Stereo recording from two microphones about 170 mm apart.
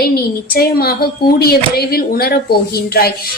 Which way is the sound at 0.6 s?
65° left (ahead or behind).